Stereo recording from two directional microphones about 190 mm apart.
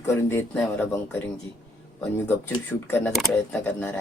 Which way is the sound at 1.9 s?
10° left (ahead or behind).